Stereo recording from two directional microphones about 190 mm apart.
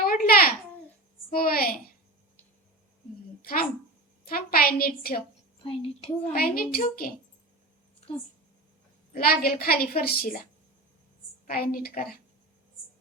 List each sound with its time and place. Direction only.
0.0 s babbling: 50° left (ahead or behind)
1.3 s a sound: 50° left (ahead or behind)
4.3 s a sound: 50° left (ahead or behind)
5.6 s a woman's voice: 30° left (ahead or behind)
6.3 s a woman's voice: 50° left (ahead or behind)
9.1 s a woman's voice: 50° left (ahead or behind)
11.4 s a woman's voice: 50° left (ahead or behind)